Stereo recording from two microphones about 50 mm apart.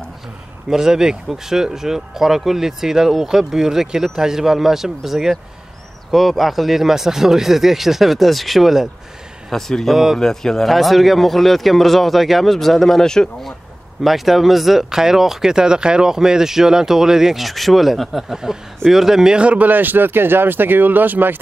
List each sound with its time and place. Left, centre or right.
0.7 s a man's voice: centre
14.0 s speech: centre
18.3 s speech: centre
19.7 s speech: right